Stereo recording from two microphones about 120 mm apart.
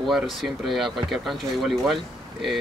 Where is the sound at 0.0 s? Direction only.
Centre (ahead or behind).